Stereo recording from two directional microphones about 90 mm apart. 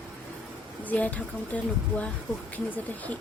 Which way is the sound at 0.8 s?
15° left (ahead or behind).